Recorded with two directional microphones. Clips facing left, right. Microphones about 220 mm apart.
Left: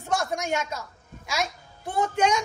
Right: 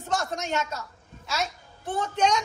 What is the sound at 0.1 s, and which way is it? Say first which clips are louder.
A woman's voice: left 2 dB; 10° left (ahead or behind).